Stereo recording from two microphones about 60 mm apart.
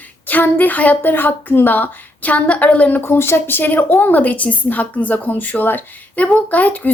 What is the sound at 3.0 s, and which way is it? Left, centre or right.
A woman's voice, left.